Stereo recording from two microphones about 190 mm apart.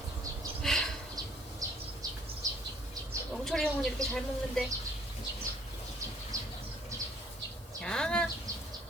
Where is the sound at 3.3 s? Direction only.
Centre (ahead or behind).